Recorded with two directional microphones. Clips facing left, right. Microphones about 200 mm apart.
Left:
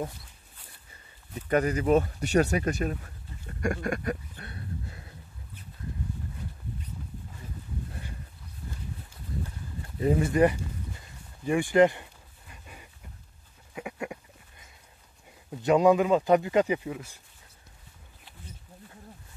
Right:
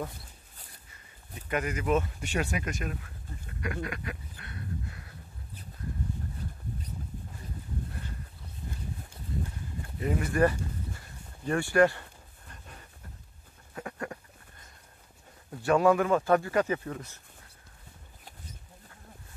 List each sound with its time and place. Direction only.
1.3 s speech: 35° left (ahead or behind)
9.9 s speech: 30° left (ahead or behind)
11.4 s a sound: 15° left (ahead or behind)
15.6 s a man's voice: 15° left (ahead or behind)